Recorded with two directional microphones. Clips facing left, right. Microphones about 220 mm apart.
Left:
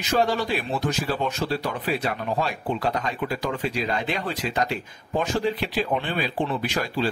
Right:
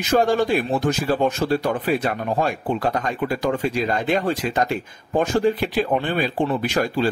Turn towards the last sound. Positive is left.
turn(degrees=-50)  # may be behind; listen again after turning